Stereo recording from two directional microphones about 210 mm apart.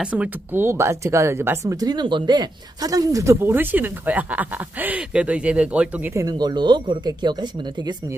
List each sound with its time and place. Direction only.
0.0 s speech: 5° right (ahead or behind)
6.2 s speech: 20° right (ahead or behind)